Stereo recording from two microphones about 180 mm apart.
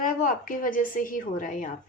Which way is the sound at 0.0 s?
45° left (ahead or behind).